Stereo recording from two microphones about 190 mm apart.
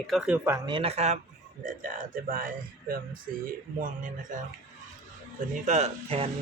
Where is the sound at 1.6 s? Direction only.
45° right (ahead or behind).